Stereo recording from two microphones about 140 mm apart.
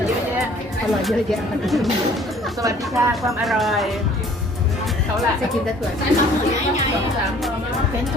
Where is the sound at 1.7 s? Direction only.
Centre (ahead or behind).